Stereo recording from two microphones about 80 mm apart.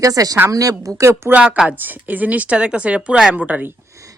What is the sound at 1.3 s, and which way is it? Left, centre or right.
A woman's voice, centre.